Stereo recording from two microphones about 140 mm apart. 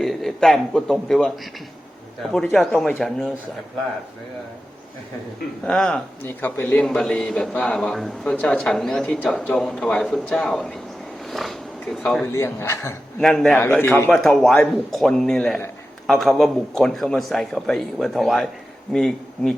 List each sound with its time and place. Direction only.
0.0 s a man's voice: 5° left (ahead or behind)
2.4 s a man's voice: centre (ahead or behind)
5.6 s a man's voice: 5° left (ahead or behind)
11.3 s zipper: centre (ahead or behind)
12.2 s a man's voice: 20° left (ahead or behind)
13.1 s a man's voice: 5° left (ahead or behind)